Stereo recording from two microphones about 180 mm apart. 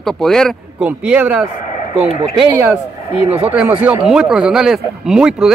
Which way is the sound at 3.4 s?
10° right (ahead or behind).